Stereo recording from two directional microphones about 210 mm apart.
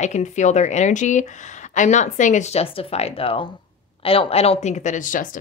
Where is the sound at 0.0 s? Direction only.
35° left (ahead or behind).